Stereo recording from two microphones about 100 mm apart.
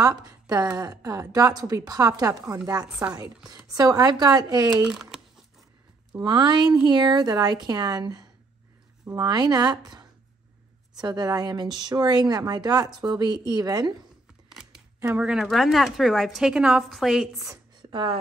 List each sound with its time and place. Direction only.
0.2 s a woman's voice: 40° right (ahead or behind)
4.8 s speech: 5° right (ahead or behind)
6.2 s speech: 45° right (ahead or behind)
14.5 s a sound: 5° right (ahead or behind)
15.0 s a woman's voice: 10° right (ahead or behind)
17.5 s a sound: 45° right (ahead or behind)